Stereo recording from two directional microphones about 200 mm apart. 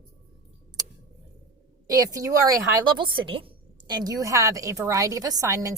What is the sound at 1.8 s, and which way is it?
A woman's voice, 15° right (ahead or behind).